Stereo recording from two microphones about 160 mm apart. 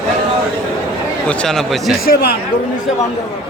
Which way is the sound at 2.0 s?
70° left (ahead or behind).